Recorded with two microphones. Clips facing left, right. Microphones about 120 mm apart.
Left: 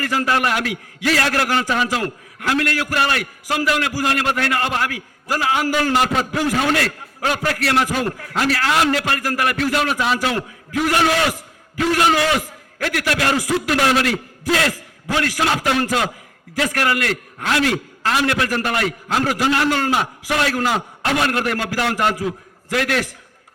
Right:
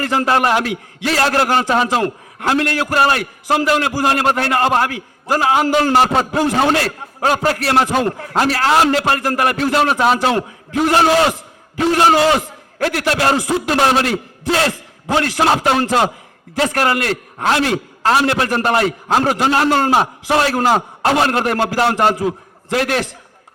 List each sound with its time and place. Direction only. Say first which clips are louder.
0.0 s a man's voice: right 4 dB; 25° right (ahead or behind)